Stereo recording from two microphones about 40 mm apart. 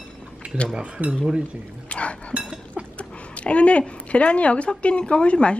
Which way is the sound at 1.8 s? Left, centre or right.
Left.